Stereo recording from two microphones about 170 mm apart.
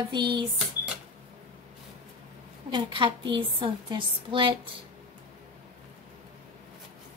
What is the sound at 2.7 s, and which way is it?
A woman's voice, 30° right (ahead or behind).